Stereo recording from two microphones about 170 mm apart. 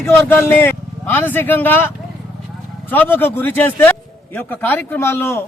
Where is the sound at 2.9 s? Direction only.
10° left (ahead or behind).